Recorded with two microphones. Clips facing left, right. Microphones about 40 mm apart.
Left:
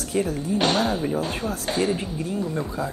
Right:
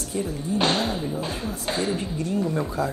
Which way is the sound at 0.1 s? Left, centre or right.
Left.